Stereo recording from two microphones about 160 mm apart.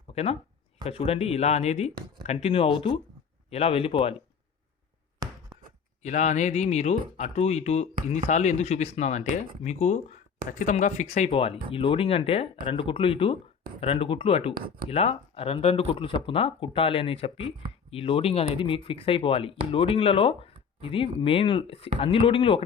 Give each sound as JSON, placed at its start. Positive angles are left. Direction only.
{"t": 0.1, "sound": "speech", "side_deg": 40}
{"t": 6.0, "sound": "speech", "side_deg": 45}
{"t": 14.5, "sound": "speech", "side_deg": -70}
{"t": 14.8, "sound": "speech", "side_deg": 40}